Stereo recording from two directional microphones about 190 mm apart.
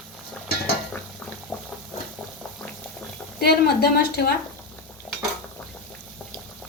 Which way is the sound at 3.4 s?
55° left (ahead or behind).